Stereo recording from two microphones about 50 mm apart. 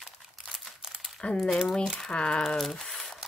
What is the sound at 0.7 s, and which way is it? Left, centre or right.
Crumpling, centre.